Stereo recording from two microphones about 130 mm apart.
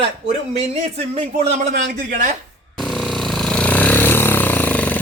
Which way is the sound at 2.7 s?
Centre (ahead or behind).